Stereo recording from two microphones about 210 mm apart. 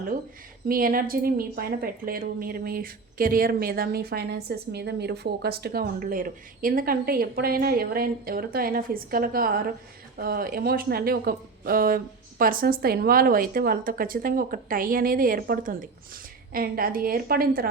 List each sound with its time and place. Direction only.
0.7 s a woman's voice: 40° right (ahead or behind)